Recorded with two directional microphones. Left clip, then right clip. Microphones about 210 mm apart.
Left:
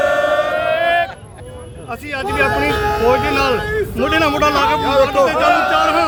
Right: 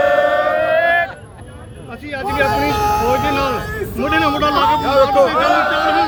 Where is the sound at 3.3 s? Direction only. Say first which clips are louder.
Left 3 dB; 40° left (ahead or behind).